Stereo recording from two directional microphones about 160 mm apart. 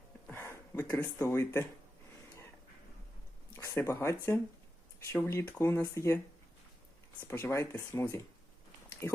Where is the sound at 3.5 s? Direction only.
15° left (ahead or behind).